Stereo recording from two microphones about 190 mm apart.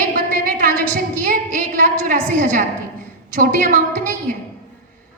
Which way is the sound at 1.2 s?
45° right (ahead or behind).